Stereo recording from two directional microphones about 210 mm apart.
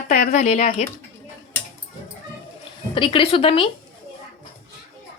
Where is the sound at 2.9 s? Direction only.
25° left (ahead or behind).